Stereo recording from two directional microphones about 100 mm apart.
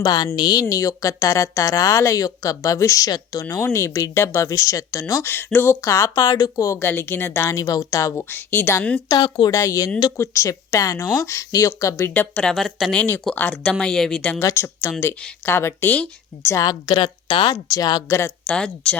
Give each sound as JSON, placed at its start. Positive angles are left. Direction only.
{"t": 0.0, "sound": "a woman's voice", "side_deg": 45}
{"t": 5.3, "sound": "speech", "side_deg": 20}
{"t": 8.2, "sound": "speech", "side_deg": 20}
{"t": 9.0, "sound": "a woman's voice", "side_deg": 45}
{"t": 9.5, "sound": "speech", "side_deg": 35}
{"t": 12.1, "sound": "speech", "side_deg": 15}
{"t": 13.0, "sound": "speech", "side_deg": 20}
{"t": 14.3, "sound": "speech", "side_deg": 25}
{"t": 16.5, "sound": "a woman's voice", "side_deg": 40}
{"t": 17.5, "sound": "speech", "side_deg": 40}
{"t": 18.4, "sound": "speech", "side_deg": 10}